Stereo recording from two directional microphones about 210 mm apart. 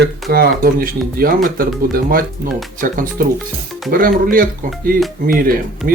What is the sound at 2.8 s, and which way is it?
Speech, 40° right (ahead or behind).